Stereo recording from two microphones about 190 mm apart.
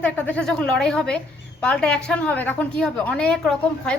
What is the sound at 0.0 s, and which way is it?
A woman's voice, 10° left (ahead or behind).